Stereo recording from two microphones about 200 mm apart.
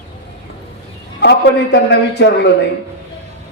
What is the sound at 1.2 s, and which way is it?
A woman's voice, 60° left (ahead or behind).